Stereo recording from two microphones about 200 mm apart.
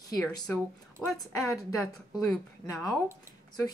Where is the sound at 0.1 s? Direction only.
15° left (ahead or behind).